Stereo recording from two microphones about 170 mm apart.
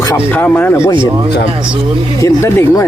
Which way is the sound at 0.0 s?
15° left (ahead or behind).